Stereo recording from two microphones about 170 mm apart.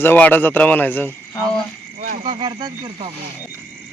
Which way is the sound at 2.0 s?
40° right (ahead or behind).